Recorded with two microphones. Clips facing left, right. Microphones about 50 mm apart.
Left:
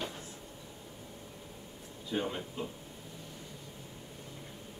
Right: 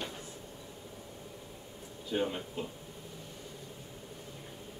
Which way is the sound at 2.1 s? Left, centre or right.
Centre.